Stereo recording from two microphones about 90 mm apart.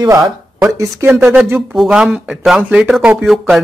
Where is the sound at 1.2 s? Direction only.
15° right (ahead or behind).